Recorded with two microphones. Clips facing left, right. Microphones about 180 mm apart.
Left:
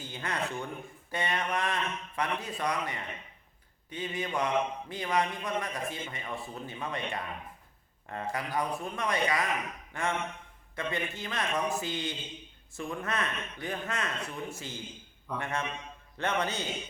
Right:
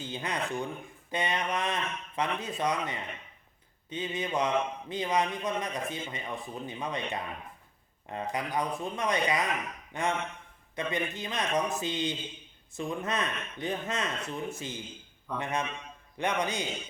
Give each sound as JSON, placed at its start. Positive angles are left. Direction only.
{"t": 0.0, "sound": "a man's voice", "side_deg": -20}